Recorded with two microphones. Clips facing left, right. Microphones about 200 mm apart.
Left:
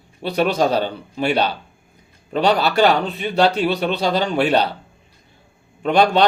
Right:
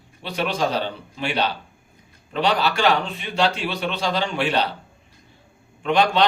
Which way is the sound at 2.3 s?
40° left (ahead or behind).